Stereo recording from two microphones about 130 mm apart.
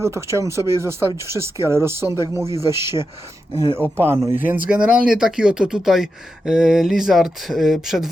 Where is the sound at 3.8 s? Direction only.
15° right (ahead or behind).